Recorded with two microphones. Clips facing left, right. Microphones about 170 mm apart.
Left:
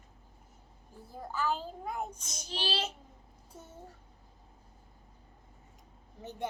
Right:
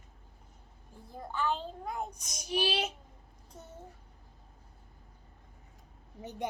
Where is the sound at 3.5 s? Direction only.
10° left (ahead or behind).